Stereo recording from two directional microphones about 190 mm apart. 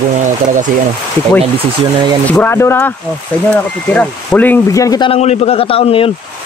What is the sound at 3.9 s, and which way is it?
A man's voice, 10° left (ahead or behind).